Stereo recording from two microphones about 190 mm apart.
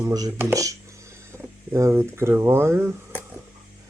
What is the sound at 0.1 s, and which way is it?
Speech, 20° right (ahead or behind).